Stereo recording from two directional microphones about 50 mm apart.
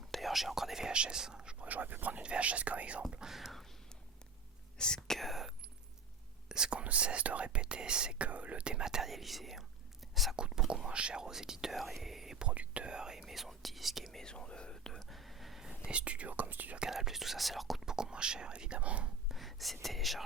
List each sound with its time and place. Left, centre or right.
0.1 s whispering: centre
1.6 s speech: right
3.2 s speech: centre
5.0 s speech: centre
6.5 s speech: centre
8.3 s speech: right; by 9.6 s centre
10.3 s speech: centre
12.4 s speech: right
13.2 s speech: centre
15.0 s a sound: centre
15.7 s speech: right
16.9 s speech: centre; by 19.1 s right
19.3 s speech: centre